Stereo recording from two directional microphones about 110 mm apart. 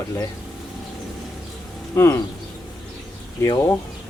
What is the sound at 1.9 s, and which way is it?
Speech, 25° left (ahead or behind).